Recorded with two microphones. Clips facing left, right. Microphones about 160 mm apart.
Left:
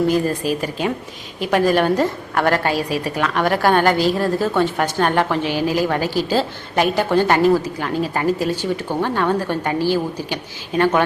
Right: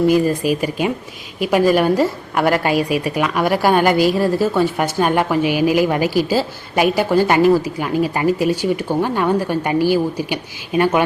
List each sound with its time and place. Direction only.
0.1 s a woman's voice: 10° right (ahead or behind)